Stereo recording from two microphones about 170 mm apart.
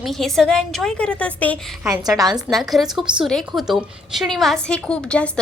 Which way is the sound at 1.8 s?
20° right (ahead or behind).